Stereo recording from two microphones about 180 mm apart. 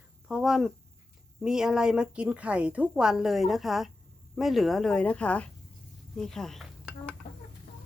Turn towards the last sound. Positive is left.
turn(degrees=0)  # may be behind; listen again after turning